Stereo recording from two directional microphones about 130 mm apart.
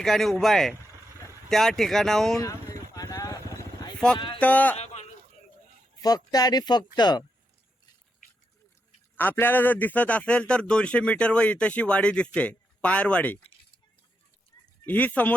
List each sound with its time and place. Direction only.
0.0 s speech: 5° left (ahead or behind)
2.4 s vehicle: 25° left (ahead or behind)
4.4 s speech: 10° left (ahead or behind)
6.0 s speech: 30° left (ahead or behind)
9.1 s a man's voice: 15° left (ahead or behind)
14.8 s a man's voice: 10° left (ahead or behind)